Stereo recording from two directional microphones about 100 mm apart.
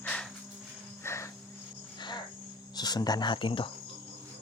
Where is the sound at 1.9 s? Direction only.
50° left (ahead or behind).